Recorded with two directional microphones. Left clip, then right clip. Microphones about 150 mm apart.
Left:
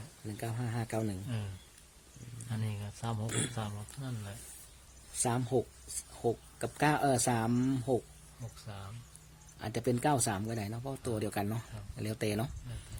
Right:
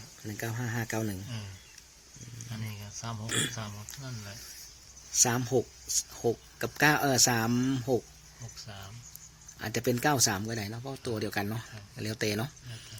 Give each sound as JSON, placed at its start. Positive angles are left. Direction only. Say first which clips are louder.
{"t": 0.3, "sound": "speech", "louder": "right 4 dB", "side_deg": -5}
{"t": 2.6, "sound": "speech", "louder": "even", "side_deg": 75}
{"t": 3.2, "sound": "speech", "louder": "right 8 dB", "side_deg": 0}
{"t": 3.5, "sound": "speech", "louder": "right 1 dB", "side_deg": 75}
{"t": 5.2, "sound": "speech", "louder": "right 4 dB", "side_deg": -5}
{"t": 9.6, "sound": "speech", "louder": "right 3 dB", "side_deg": 0}